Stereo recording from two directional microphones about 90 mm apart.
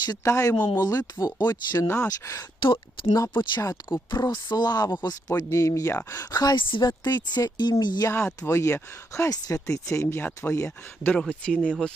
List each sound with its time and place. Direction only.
0.3 s speech: 35° left (ahead or behind)
2.0 s speech: 30° left (ahead or behind)
2.6 s speech: 70° left (ahead or behind)
3.6 s speech: 40° left (ahead or behind)
6.6 s speech: 65° left (ahead or behind)
8.0 s speech: 30° left (ahead or behind)
11.1 s speech: 10° left (ahead or behind)